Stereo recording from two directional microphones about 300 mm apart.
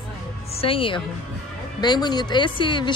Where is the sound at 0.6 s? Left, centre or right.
Centre.